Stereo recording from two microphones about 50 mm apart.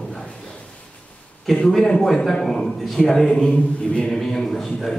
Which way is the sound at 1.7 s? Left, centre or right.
Centre.